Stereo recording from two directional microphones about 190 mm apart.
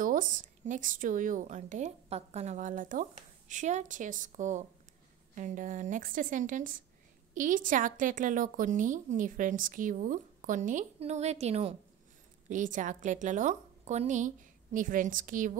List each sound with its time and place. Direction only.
0.0 s a woman's voice: 45° right (ahead or behind)